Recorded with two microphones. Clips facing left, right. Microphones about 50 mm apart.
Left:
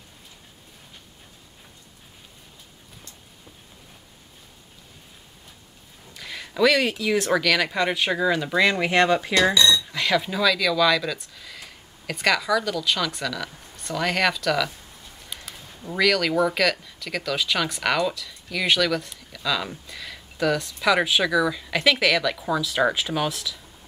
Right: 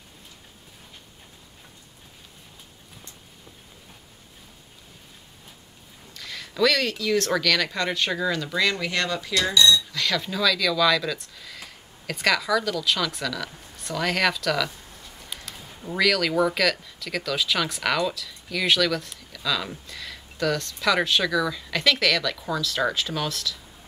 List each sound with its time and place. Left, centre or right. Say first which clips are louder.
6.1 s speech: left 1 dB; centre